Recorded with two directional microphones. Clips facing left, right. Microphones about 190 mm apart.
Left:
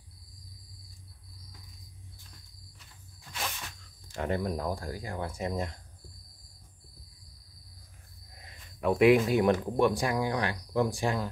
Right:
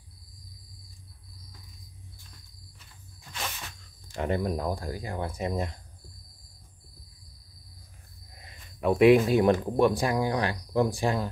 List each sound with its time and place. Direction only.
4.1 s speech: 25° right (ahead or behind)
8.8 s speech: 25° right (ahead or behind)